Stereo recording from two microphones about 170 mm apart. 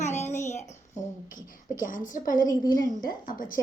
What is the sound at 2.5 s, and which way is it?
Speech, 20° left (ahead or behind).